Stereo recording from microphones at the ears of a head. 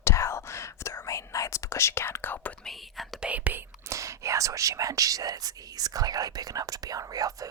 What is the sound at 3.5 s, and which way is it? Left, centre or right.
Speech, right.